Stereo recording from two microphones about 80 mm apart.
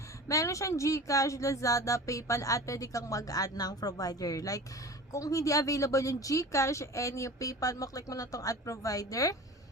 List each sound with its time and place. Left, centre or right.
0.3 s speech: left